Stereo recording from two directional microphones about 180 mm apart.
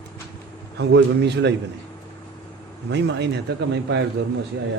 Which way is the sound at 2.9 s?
70° right (ahead or behind).